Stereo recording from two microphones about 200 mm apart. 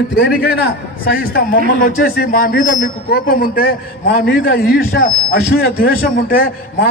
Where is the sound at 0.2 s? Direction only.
55° left (ahead or behind).